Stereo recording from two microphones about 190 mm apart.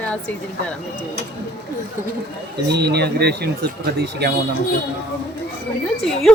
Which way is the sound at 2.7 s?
60° right (ahead or behind).